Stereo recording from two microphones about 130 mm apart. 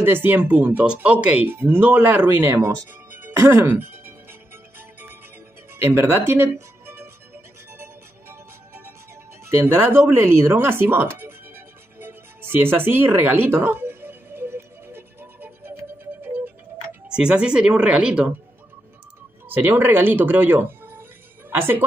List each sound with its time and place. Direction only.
0.0 s speech: 15° right (ahead or behind)
7.7 s music: 20° right (ahead or behind)
9.5 s a sound: 15° right (ahead or behind)
17.1 s speech: 10° right (ahead or behind)
19.5 s a woman's voice: 15° right (ahead or behind)